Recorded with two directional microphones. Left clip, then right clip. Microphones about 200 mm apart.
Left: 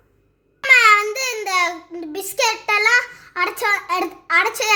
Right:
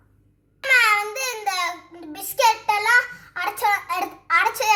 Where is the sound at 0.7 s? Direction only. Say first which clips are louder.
Left 5 dB; 45° left (ahead or behind).